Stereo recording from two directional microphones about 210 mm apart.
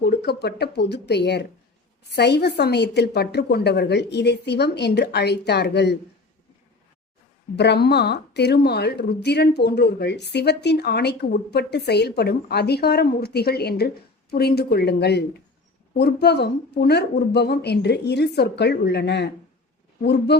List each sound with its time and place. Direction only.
0.0 s a woman's voice: 50° left (ahead or behind)
7.5 s a woman's voice: 55° left (ahead or behind)